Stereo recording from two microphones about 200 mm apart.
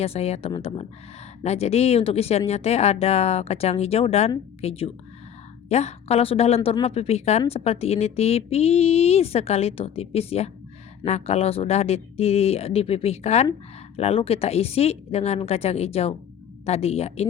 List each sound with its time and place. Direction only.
0.0 s a woman's voice: 30° left (ahead or behind)